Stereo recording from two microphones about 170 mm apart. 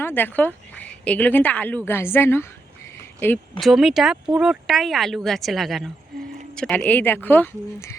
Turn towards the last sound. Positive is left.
turn(degrees=10)  # may be behind; listen again after turning